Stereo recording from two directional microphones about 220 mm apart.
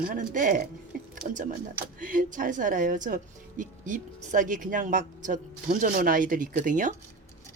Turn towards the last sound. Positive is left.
turn(degrees=-35)  # may be behind; listen again after turning